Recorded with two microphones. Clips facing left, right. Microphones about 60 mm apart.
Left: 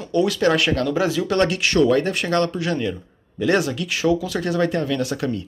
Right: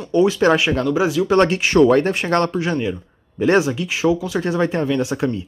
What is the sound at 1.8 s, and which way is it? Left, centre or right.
Speech, right.